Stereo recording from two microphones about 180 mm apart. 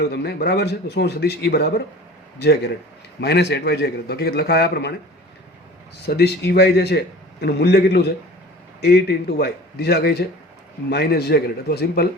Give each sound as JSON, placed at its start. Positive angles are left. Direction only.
{"t": 0.0, "sound": "a man's voice", "side_deg": 65}
{"t": 6.1, "sound": "a man's voice", "side_deg": 65}